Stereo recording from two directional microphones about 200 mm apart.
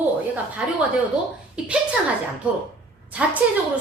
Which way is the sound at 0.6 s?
5° right (ahead or behind).